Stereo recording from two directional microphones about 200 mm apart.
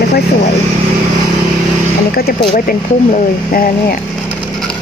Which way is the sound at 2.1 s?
50° left (ahead or behind).